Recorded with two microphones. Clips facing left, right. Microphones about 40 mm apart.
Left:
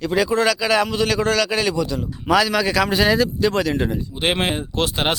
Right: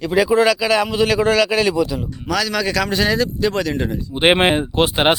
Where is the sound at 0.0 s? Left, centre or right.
Centre.